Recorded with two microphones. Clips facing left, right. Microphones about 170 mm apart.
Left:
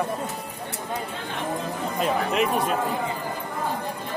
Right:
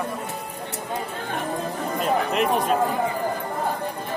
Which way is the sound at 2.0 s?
Centre (ahead or behind).